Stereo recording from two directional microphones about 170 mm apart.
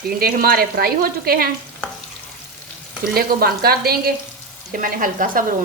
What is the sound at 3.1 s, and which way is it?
A woman's voice, 60° right (ahead or behind).